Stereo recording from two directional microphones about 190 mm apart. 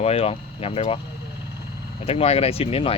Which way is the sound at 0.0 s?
30° left (ahead or behind).